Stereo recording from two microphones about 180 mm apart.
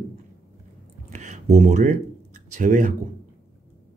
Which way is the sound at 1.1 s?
40° right (ahead or behind).